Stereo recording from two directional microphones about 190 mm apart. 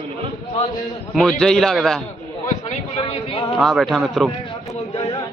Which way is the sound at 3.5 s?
Centre (ahead or behind).